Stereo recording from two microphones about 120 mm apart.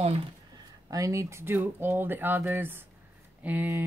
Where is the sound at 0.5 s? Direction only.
30° right (ahead or behind).